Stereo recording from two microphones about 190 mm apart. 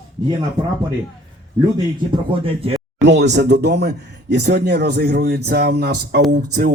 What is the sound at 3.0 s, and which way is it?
Speech, 70° right (ahead or behind).